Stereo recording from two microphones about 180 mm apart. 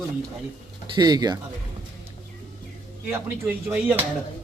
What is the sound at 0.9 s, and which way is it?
Speech, 25° right (ahead or behind).